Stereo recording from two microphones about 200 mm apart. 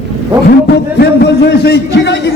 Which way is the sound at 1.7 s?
60° left (ahead or behind).